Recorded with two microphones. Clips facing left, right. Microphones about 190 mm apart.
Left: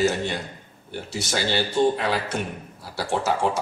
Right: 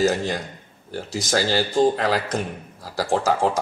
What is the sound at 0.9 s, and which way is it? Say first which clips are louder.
Speech: right 3 dB; 90° right.